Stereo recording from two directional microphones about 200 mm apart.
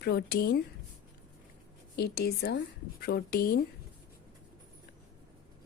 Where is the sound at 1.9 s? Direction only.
55° left (ahead or behind).